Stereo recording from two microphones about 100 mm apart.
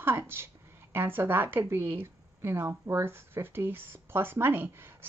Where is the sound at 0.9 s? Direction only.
20° right (ahead or behind).